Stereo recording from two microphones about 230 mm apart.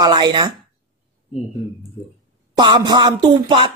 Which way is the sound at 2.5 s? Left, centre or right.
Centre.